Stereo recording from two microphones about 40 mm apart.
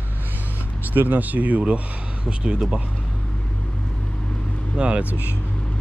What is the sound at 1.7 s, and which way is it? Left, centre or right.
Speech, right.